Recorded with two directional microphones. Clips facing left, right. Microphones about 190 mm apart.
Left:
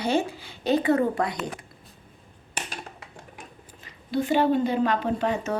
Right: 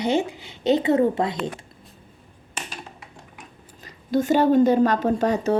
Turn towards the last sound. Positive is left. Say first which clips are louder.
# right 5 dB
turn(degrees=-35)  # may be behind; listen again after turning